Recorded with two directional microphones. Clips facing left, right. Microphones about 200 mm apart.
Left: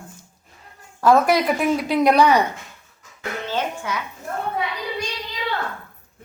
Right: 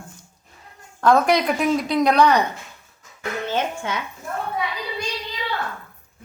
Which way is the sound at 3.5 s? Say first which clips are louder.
Even; 25° right (ahead or behind).